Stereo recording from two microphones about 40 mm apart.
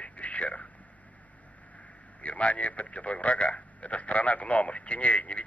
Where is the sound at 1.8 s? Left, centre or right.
Left.